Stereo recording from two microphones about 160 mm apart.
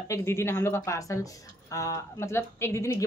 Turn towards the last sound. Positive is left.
turn(degrees=20)  # may be behind; listen again after turning